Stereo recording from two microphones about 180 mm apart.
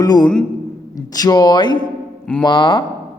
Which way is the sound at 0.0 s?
20° left (ahead or behind).